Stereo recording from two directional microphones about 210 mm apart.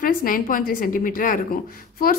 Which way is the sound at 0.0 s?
40° left (ahead or behind).